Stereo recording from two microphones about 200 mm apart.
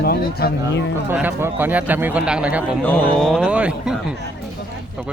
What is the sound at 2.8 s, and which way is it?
A man's voice, 5° left (ahead or behind).